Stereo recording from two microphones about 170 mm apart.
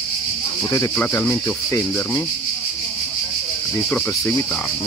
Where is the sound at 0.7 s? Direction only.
15° left (ahead or behind).